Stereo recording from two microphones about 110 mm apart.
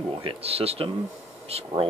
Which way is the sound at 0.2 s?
60° right (ahead or behind).